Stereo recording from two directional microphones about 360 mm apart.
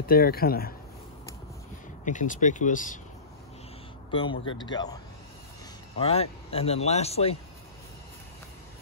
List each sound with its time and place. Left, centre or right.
0.0 s speech: left
2.0 s speech: left
4.1 s speech: centre